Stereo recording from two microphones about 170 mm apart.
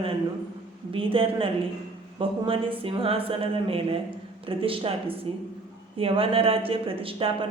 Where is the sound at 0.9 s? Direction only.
30° right (ahead or behind).